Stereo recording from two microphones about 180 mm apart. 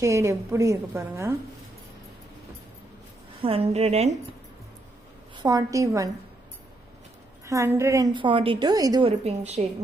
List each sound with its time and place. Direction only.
0.0 s a woman's voice: 15° right (ahead or behind)
3.4 s a woman's voice: 35° right (ahead or behind)
5.4 s a woman's voice: 20° right (ahead or behind)
7.4 s a woman's voice: 15° right (ahead or behind)
9.2 s a woman's voice: 35° right (ahead or behind)